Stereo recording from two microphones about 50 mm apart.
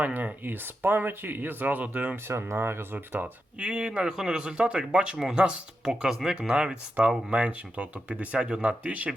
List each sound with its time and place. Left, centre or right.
0.0 s speech: right
0.4 s speech: right
2.2 s speech: right
2.6 s speech: right
3.6 s speech: right
8.6 s speech: right